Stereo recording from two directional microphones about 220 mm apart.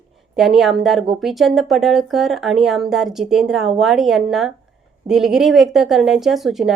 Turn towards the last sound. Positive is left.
turn(degrees=0)  # may be behind; listen again after turning